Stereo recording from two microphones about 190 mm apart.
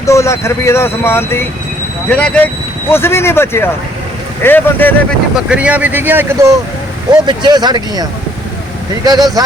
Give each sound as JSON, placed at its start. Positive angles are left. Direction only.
{"t": 0.0, "sound": "speech", "side_deg": 15}
{"t": 5.5, "sound": "speech", "side_deg": -5}
{"t": 9.0, "sound": "speech", "side_deg": -20}